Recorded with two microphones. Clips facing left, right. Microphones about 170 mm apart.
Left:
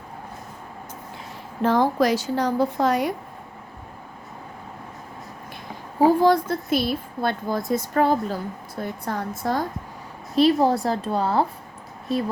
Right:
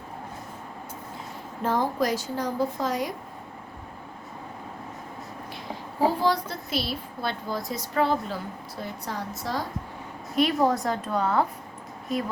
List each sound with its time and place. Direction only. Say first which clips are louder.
1.6 s a woman's voice: left 6 dB; 80° left; by 3.2 s 65° left (ahead or behind)
6.1 s a woman's voice: left 7 dB; 50° left (ahead or behind)
10.3 s a woman's voice: left 5 dB; 30° left (ahead or behind)